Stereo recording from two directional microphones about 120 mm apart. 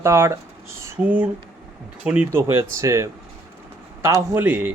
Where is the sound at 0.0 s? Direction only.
20° right (ahead or behind).